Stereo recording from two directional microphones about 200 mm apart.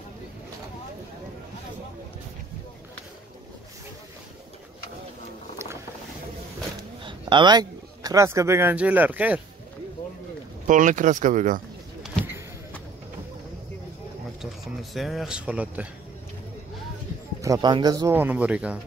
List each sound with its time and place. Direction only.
7.0 s a man's voice: 25° right (ahead or behind); by 9.4 s 5° right (ahead or behind)
10.7 s speech: 40° right (ahead or behind)
14.4 s speech: centre (ahead or behind)
17.4 s speech: 20° right (ahead or behind)